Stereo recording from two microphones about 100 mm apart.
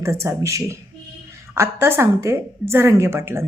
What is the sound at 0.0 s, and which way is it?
Speech, 30° right (ahead or behind).